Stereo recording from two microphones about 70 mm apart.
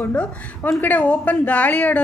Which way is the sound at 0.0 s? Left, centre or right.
Left.